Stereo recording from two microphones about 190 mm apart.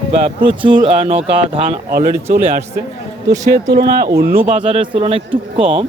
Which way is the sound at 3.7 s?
55° right (ahead or behind).